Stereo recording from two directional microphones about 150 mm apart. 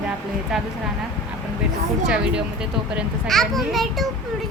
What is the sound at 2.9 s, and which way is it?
Speech, centre (ahead or behind).